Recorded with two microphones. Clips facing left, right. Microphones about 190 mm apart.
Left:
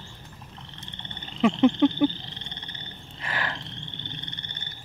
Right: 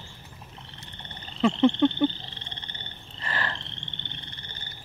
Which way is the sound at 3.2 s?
10° left (ahead or behind).